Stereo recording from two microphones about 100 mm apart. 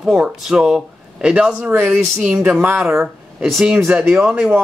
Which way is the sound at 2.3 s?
15° right (ahead or behind).